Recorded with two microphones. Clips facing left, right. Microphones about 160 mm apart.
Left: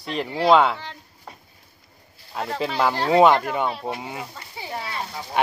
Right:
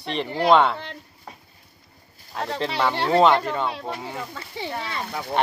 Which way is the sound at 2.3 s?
5° left (ahead or behind).